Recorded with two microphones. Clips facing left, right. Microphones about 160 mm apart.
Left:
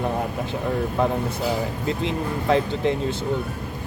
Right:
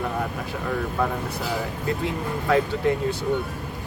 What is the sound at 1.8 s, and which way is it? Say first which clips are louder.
Speech: left 1 dB; 20° left (ahead or behind).